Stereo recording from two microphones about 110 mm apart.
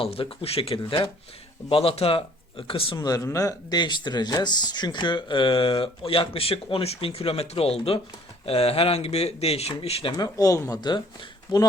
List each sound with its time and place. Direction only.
0.0 s speech: 55° left (ahead or behind)
0.8 s speech: 45° left (ahead or behind)
1.7 s speech: 60° left (ahead or behind)
3.0 s speech: 35° left (ahead or behind); by 10.1 s 70° left (ahead or behind)
10.1 s speech: 35° left (ahead or behind)